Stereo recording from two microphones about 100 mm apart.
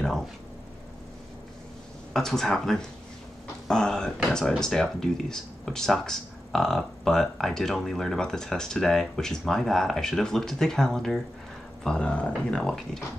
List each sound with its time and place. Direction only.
2.1 s speech: 5° left (ahead or behind)